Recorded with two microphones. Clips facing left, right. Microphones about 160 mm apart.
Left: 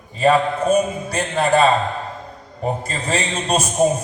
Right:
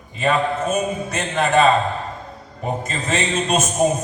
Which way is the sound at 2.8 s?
35° left (ahead or behind).